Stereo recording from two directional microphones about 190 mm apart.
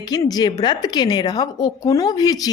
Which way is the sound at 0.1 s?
20° left (ahead or behind).